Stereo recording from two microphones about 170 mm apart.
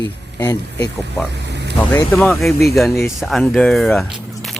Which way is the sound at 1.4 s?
85° right.